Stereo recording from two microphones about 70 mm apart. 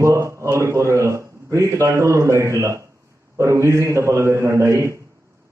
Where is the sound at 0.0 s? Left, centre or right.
Right.